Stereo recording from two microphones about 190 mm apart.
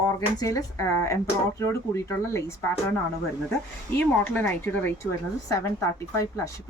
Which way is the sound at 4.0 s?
10° left (ahead or behind).